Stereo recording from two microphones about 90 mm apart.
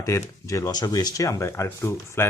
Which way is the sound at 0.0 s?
35° left (ahead or behind).